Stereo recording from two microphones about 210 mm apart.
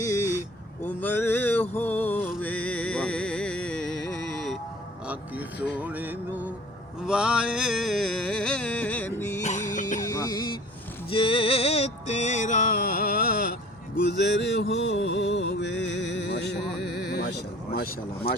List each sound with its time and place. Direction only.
0.0 s a sound: 15° left (ahead or behind)
0.9 s mantra: 10° left (ahead or behind)
2.2 s music: 5° left (ahead or behind)
5.0 s speech: 5° right (ahead or behind)
7.1 s music: 5° right (ahead or behind)
9.4 s music: 35° left (ahead or behind)
10.1 s music: 20° left (ahead or behind); by 16.6 s 55° left (ahead or behind)
17.1 s vehicle: 50° left (ahead or behind)